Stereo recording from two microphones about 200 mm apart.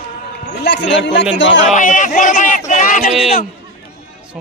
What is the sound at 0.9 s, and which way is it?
Speech, 60° left (ahead or behind).